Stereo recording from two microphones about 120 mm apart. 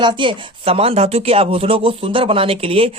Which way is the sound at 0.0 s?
40° right (ahead or behind).